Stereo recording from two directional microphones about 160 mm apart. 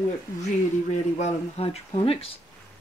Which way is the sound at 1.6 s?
40° left (ahead or behind).